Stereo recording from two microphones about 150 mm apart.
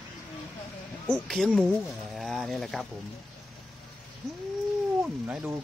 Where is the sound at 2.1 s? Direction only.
Centre (ahead or behind).